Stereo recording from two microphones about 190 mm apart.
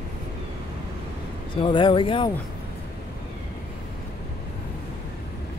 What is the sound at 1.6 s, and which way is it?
Speech, 25° left (ahead or behind).